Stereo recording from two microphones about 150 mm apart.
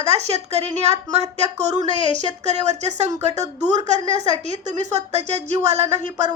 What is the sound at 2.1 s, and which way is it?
A woman's voice, 50° right (ahead or behind).